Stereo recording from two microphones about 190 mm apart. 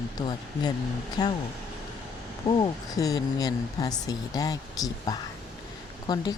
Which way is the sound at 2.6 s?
20° left (ahead or behind).